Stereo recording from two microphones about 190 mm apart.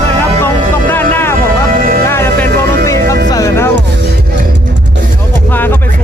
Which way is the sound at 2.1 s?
15° left (ahead or behind).